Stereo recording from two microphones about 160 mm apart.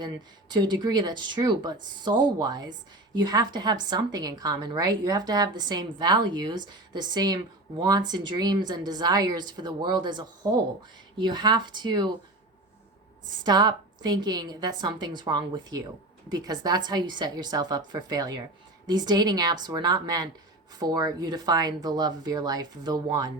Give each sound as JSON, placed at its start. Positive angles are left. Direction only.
{"t": 0.0, "sound": "a woman's voice", "side_deg": -25}
{"t": 13.4, "sound": "a woman's voice", "side_deg": -25}